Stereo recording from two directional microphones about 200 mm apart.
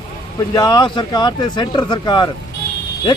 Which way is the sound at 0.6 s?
20° left (ahead or behind).